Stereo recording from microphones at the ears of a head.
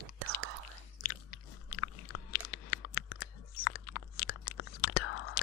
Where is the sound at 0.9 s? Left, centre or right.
Left.